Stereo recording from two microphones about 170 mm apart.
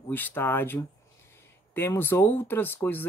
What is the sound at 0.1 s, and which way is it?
Speech, 10° left (ahead or behind).